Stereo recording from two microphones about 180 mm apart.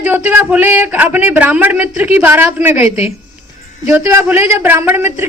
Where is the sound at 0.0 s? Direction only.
10° right (ahead or behind).